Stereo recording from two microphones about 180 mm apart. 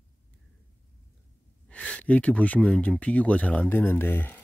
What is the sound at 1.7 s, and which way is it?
Speech, 5° left (ahead or behind).